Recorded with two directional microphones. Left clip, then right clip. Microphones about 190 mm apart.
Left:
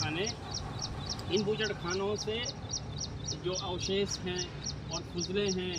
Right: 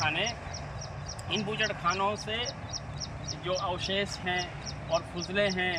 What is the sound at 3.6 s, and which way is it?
Speech, 15° right (ahead or behind).